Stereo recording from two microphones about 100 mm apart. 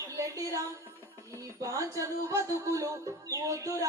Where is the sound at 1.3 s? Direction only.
35° right (ahead or behind).